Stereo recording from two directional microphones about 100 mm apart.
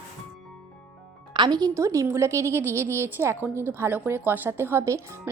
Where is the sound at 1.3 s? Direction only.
50° right (ahead or behind).